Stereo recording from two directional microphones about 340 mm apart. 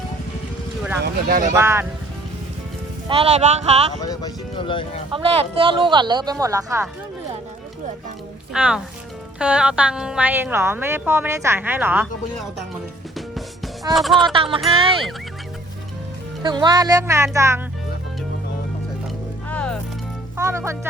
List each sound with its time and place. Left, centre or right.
1.0 s speech: right
1.5 s speech: centre
3.1 s speech: centre
4.0 s speech: centre
5.1 s speech: centre
8.5 s a woman's voice: centre
13.9 s a woman's voice: centre
14.3 s speech: centre
16.4 s speech: centre
19.5 s music: centre
20.3 s speech: centre